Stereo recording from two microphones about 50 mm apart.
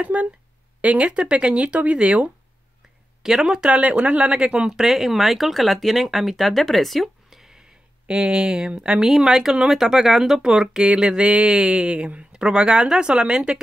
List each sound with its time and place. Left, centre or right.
0.0 s a man's voice: right
3.2 s speech: centre
3.7 s a man's voice: right